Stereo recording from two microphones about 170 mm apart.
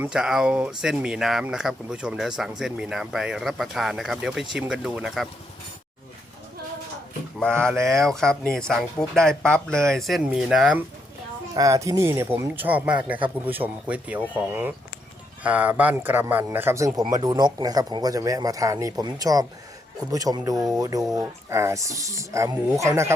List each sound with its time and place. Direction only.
0.0 s speech: 5° right (ahead or behind)
7.3 s speech: 5° left (ahead or behind)
11.5 s speech: 20° right (ahead or behind)
21.0 s speech: centre (ahead or behind)
21.5 s speech: 15° right (ahead or behind)